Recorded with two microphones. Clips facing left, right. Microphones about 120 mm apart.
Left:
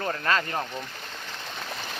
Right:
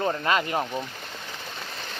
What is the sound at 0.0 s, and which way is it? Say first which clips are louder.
Speech: right 2 dB; 15° right (ahead or behind).